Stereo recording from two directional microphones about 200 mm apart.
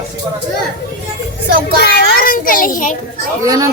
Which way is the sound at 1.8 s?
55° left (ahead or behind).